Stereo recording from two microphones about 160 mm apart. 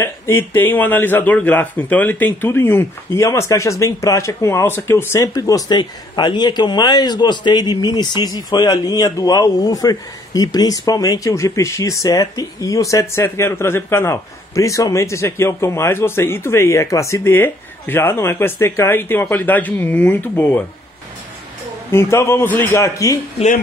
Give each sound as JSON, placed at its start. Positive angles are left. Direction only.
{"t": 0.0, "sound": "a man's voice", "side_deg": 15}
{"t": 21.9, "sound": "a man's voice", "side_deg": 15}